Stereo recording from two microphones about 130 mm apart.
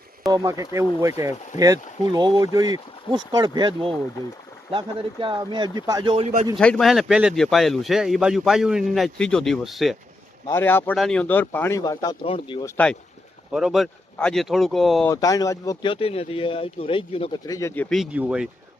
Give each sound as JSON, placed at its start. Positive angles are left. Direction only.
{"t": 0.3, "sound": "speech", "side_deg": -25}
{"t": 6.2, "sound": "speech", "side_deg": -65}
{"t": 6.6, "sound": "a man's voice", "side_deg": 5}
{"t": 10.5, "sound": "speech", "side_deg": 15}
{"t": 10.9, "sound": "speech", "side_deg": 5}
{"t": 11.8, "sound": "speech", "side_deg": 30}
{"t": 12.2, "sound": "speech", "side_deg": 40}
{"t": 12.6, "sound": "speech", "side_deg": 10}
{"t": 13.5, "sound": "a man's voice", "side_deg": -5}
{"t": 15.0, "sound": "speech", "side_deg": 25}
{"t": 15.9, "sound": "speech", "side_deg": 45}
{"t": 17.3, "sound": "speech", "side_deg": 25}
{"t": 17.8, "sound": "a man's voice", "side_deg": 0}
{"t": 18.1, "sound": "speech", "side_deg": -10}